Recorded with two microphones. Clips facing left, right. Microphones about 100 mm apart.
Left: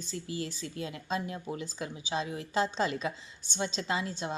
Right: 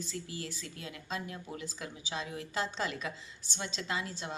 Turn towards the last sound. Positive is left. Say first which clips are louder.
# left 4 dB
turn(degrees=25)  # may be behind; listen again after turning